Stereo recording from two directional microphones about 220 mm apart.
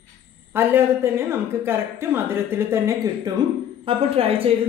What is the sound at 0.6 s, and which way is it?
Speech, 10° right (ahead or behind).